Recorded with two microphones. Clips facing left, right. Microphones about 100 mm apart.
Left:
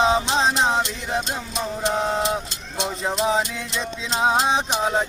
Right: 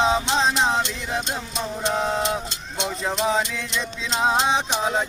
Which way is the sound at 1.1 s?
25° left (ahead or behind).